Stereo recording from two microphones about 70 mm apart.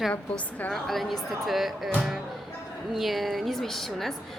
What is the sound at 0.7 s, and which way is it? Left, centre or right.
A woman's voice, centre.